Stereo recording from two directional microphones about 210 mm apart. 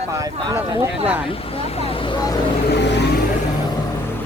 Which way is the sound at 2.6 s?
55° left (ahead or behind).